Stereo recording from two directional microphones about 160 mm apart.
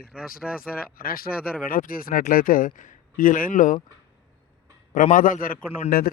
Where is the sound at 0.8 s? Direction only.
65° left (ahead or behind).